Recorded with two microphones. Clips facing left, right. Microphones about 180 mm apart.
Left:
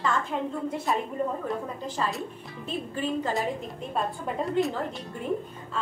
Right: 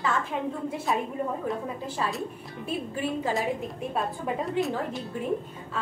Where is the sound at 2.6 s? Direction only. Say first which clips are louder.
Even; 10° right (ahead or behind).